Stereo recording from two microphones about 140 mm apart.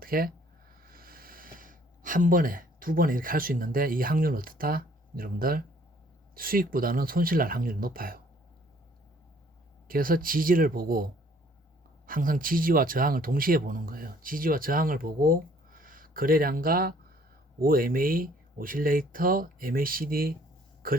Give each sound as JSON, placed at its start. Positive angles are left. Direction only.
{"t": 0.0, "sound": "speech", "side_deg": -90}
{"t": 9.9, "sound": "speech", "side_deg": -90}
{"t": 12.0, "sound": "speech", "side_deg": -80}